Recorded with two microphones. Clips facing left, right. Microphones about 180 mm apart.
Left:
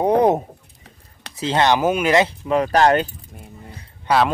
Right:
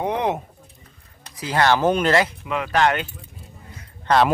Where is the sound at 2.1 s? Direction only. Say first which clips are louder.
Left 4 dB; 30° left (ahead or behind).